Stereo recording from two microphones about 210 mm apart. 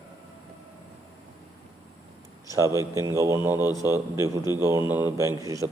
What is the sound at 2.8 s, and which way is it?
A man's voice, 15° right (ahead or behind).